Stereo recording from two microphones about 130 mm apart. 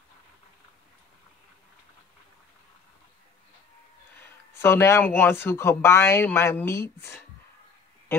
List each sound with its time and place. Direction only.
4.6 s speech: 20° left (ahead or behind)